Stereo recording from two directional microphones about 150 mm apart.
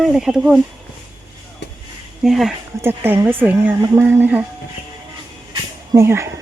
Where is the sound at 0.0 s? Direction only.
5° right (ahead or behind).